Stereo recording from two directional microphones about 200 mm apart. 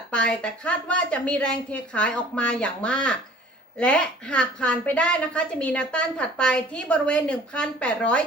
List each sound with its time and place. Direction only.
0.1 s a woman's voice: 5° left (ahead or behind)